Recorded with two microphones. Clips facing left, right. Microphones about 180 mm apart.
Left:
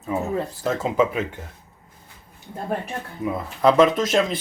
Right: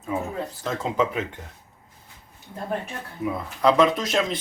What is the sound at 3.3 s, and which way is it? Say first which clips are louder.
Speech: left 3 dB; centre (ahead or behind).